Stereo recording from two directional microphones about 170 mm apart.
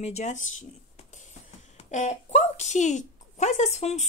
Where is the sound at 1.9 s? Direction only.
45° left (ahead or behind).